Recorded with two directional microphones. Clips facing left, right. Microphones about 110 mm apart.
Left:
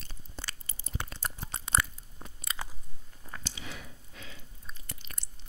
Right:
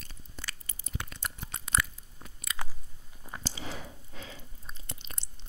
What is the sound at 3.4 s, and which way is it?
Chewing, 35° right (ahead or behind).